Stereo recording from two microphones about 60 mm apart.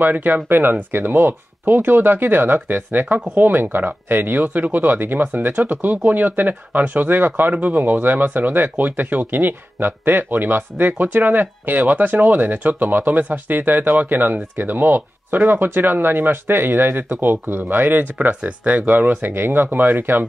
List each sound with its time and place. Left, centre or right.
0.0 s speech: right